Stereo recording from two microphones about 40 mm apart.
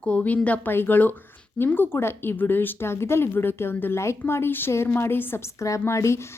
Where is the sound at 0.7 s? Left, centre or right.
Left.